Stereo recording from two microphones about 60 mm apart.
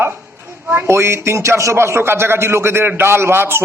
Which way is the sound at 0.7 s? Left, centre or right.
Right.